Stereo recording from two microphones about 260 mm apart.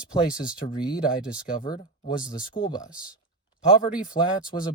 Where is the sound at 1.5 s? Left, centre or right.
Centre.